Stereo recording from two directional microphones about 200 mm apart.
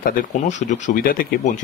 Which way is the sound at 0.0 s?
40° left (ahead or behind).